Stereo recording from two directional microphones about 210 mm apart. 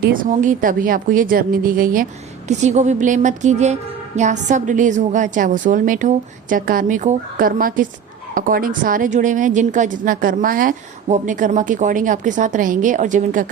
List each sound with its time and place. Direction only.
0.0 s speech: 40° right (ahead or behind)